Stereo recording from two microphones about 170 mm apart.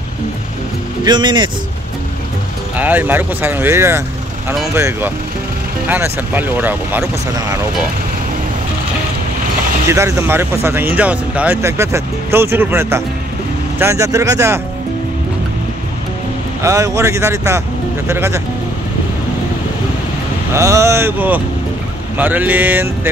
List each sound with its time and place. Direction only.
1.0 s speech: 25° right (ahead or behind)
2.8 s speech: 10° right (ahead or behind)
9.8 s speech: 20° right (ahead or behind)
16.6 s speech: 20° right (ahead or behind)
20.5 s speech: 15° right (ahead or behind)